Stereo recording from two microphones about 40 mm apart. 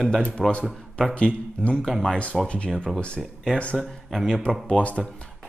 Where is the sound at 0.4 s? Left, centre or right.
Centre.